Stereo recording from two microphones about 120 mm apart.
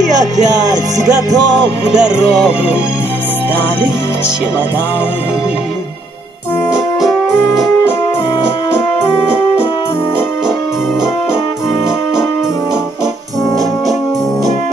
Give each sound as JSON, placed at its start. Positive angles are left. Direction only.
{"t": 0.2, "sound": "music", "side_deg": -30}
{"t": 1.9, "sound": "music", "side_deg": -5}